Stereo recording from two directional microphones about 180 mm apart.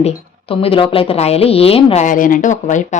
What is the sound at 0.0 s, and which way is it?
A woman's voice, 30° left (ahead or behind).